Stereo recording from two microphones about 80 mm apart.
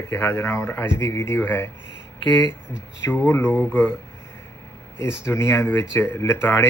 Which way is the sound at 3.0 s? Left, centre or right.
Left.